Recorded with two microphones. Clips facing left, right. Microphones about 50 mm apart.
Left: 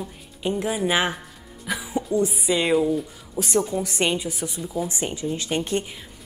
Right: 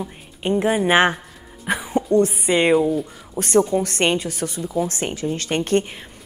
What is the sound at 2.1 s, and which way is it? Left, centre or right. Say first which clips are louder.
Speech: right 5 dB; right.